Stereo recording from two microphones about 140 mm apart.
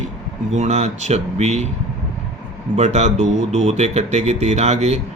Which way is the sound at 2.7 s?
55° right (ahead or behind).